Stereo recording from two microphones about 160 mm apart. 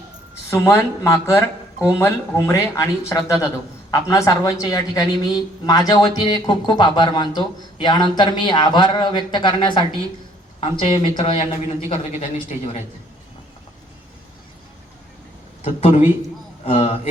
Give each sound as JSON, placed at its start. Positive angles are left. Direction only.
{"t": 0.5, "sound": "a woman's voice", "side_deg": 15}
{"t": 15.6, "sound": "speech", "side_deg": 45}